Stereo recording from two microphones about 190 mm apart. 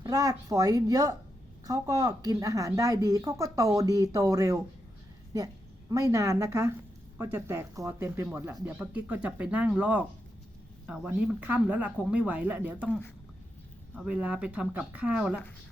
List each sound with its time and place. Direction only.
0.0 s a woman's voice: 15° right (ahead or behind)
5.9 s a woman's voice: 15° right (ahead or behind)
13.9 s a woman's voice: 5° right (ahead or behind)